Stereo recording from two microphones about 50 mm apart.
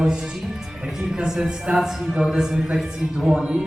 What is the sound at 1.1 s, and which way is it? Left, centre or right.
A man's voice, centre.